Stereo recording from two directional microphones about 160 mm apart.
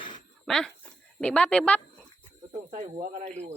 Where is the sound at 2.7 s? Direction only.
45° right (ahead or behind).